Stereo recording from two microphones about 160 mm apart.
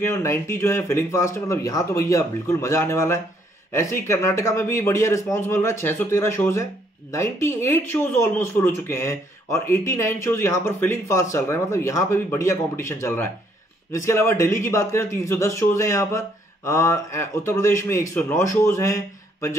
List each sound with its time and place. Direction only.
0.0 s speech: 15° left (ahead or behind)